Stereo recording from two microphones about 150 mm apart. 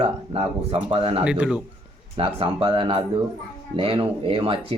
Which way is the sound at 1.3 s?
5° right (ahead or behind).